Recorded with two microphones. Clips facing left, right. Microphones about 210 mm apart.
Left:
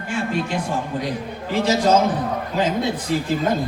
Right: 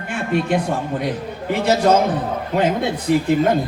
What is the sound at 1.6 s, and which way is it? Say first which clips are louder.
Speech: right 2 dB; 60° right (ahead or behind).